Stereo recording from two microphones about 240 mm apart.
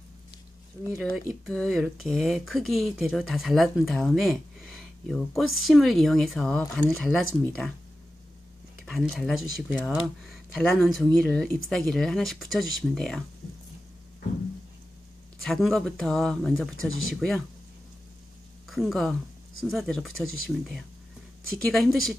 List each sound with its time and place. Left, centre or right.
0.9 s speech: centre
8.8 s speech: centre
15.4 s speech: centre
18.7 s speech: centre